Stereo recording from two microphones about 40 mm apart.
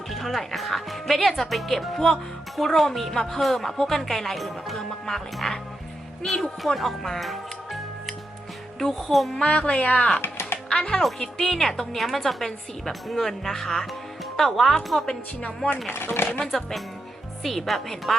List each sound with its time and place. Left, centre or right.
0.1 s a woman's voice: centre
4.9 s music: centre
6.2 s a woman's voice: centre
9.5 s speech: left
11.2 s a woman's voice: centre
15.4 s speech: left
15.9 s speech: left
17.4 s a woman's voice: centre